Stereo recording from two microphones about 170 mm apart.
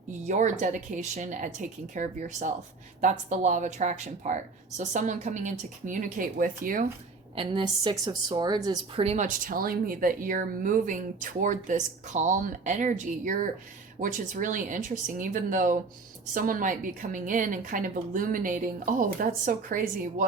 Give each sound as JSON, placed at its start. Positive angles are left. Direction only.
{"t": 0.3, "sound": "speech", "side_deg": -45}
{"t": 7.3, "sound": "a woman's voice", "side_deg": -30}
{"t": 9.0, "sound": "speech", "side_deg": -50}